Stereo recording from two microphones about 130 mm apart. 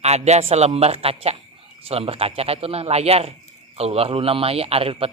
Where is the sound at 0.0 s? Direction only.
55° right (ahead or behind).